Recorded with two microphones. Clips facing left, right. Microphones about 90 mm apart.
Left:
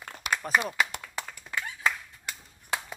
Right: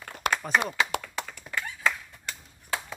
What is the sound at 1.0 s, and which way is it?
Clapping, 15° left (ahead or behind).